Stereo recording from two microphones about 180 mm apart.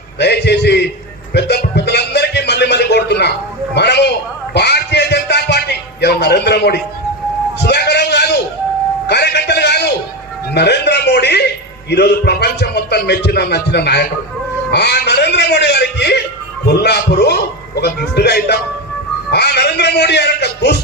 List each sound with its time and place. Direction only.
0.2 s speech: 65° left (ahead or behind)
1.3 s a sound: 65° left (ahead or behind)
3.8 s speech: 70° left (ahead or behind)
4.5 s a sound: 65° left (ahead or behind)
9.0 s music: 70° left (ahead or behind)
11.9 s a man's voice: 70° left (ahead or behind)